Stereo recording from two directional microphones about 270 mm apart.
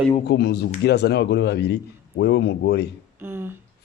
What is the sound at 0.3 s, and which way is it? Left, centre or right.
Speech, left.